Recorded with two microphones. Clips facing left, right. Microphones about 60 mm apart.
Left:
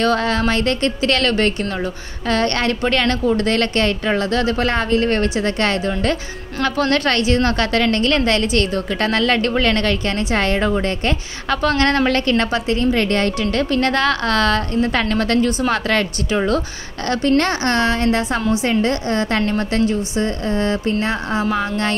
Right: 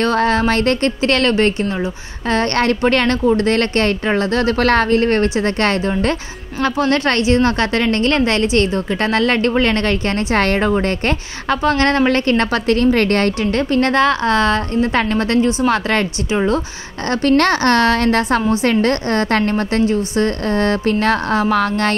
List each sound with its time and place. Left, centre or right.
0.0 s a woman's voice: right
6.6 s a woman's voice: right
17.2 s speech: right
19.5 s a woman's voice: right
20.2 s speech: right